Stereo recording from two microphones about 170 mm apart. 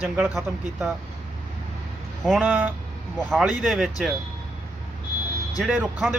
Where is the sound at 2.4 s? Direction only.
10° right (ahead or behind).